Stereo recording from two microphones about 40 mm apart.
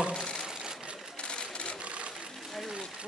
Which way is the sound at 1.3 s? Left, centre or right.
Left.